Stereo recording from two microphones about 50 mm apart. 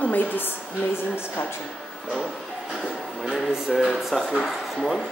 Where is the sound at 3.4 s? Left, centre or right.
Centre.